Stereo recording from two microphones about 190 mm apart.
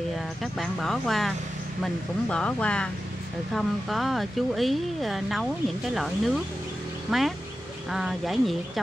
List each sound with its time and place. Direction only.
0.4 s speech: centre (ahead or behind)